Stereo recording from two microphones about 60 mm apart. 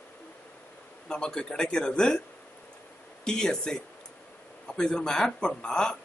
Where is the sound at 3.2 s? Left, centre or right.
Centre.